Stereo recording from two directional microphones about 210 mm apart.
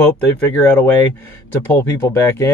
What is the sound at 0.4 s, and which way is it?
Speech, 5° left (ahead or behind).